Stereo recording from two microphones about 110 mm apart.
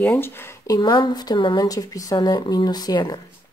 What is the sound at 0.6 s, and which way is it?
A woman's voice, 35° left (ahead or behind).